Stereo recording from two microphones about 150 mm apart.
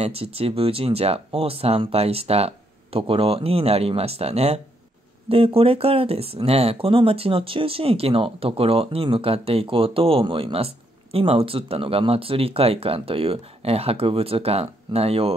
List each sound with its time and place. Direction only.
0.0 s speech: 40° right (ahead or behind)